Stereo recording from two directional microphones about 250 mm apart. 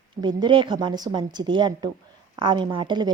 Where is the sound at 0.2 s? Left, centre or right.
Centre.